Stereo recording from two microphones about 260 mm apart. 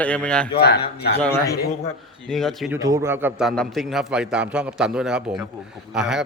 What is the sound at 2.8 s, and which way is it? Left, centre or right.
A man's voice, centre.